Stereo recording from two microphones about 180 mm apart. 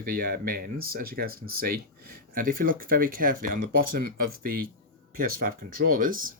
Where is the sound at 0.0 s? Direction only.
55° right (ahead or behind).